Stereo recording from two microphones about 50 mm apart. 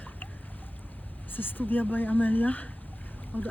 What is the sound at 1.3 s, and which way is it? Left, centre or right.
Speech, left.